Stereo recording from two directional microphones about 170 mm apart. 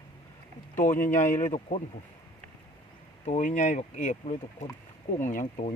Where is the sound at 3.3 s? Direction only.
45° left (ahead or behind).